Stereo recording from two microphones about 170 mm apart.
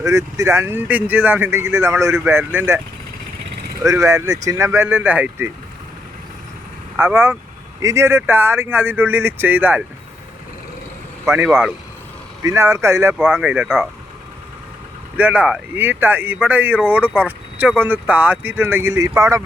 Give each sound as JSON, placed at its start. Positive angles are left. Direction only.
{"t": 0.0, "sound": "speech", "side_deg": -15}
{"t": 6.9, "sound": "speech", "side_deg": -15}
{"t": 11.4, "sound": "speech", "side_deg": 0}
{"t": 12.4, "sound": "speech", "side_deg": -20}
{"t": 15.2, "sound": "speech", "side_deg": -10}